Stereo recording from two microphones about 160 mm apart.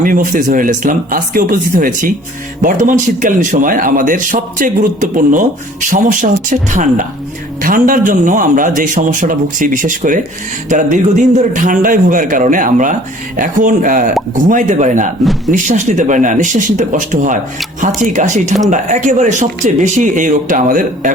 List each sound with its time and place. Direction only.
0.0 s speech: 55° right (ahead or behind)